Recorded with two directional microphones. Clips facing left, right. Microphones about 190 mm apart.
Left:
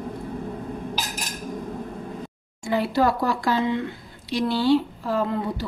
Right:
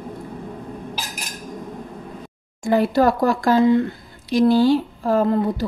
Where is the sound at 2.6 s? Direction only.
45° right (ahead or behind).